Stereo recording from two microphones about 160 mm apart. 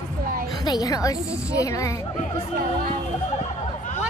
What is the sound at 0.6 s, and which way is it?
A woman's voice, 25° left (ahead or behind).